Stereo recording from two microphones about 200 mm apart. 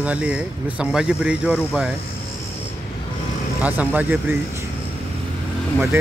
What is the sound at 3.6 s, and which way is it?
Speech, 10° right (ahead or behind).